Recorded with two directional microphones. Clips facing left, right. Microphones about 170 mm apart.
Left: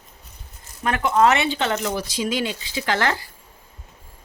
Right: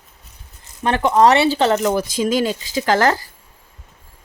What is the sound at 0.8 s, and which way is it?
Speech, 30° right (ahead or behind).